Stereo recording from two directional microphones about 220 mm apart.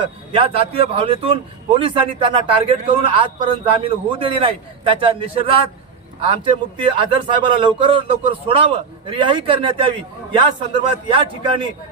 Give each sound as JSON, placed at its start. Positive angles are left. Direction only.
{"t": 0.0, "sound": "a man's voice", "side_deg": -25}